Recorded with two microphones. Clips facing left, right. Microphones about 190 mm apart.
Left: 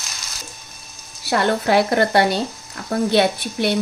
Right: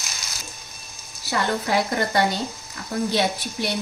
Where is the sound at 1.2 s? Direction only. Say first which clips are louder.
Left 6 dB; 65° left (ahead or behind).